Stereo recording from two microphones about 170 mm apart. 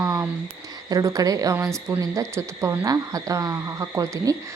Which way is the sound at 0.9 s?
20° right (ahead or behind).